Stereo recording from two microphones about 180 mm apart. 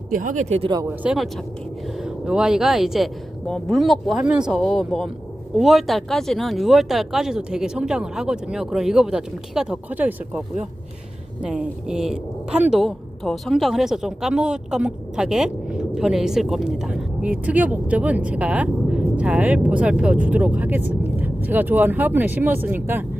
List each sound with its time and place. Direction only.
0.1 s speech: 45° right (ahead or behind)
0.7 s speech: 20° right (ahead or behind)
1.0 s a woman's voice: centre (ahead or behind)